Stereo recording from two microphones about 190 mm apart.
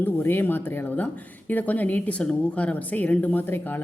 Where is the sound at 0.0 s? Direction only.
10° left (ahead or behind).